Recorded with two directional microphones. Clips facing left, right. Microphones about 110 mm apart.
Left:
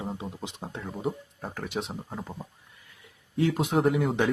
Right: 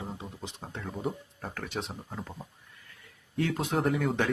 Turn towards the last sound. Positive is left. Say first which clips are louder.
# left 2 dB
turn(degrees=5)  # may be behind; listen again after turning